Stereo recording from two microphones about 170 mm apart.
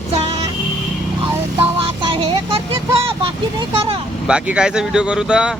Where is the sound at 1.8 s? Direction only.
35° right (ahead or behind).